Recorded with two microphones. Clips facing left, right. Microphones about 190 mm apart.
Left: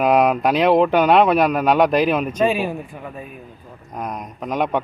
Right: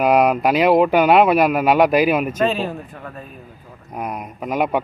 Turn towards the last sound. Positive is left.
turn(degrees=-5)  # may be behind; listen again after turning